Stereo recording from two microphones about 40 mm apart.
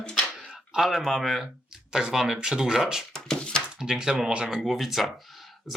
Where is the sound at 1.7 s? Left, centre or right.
Centre.